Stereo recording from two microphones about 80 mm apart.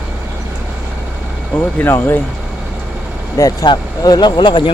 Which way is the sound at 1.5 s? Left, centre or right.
Left.